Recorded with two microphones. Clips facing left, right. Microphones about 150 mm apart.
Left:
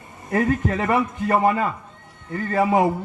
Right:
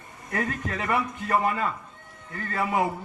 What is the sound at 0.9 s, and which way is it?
Speech, 45° left (ahead or behind).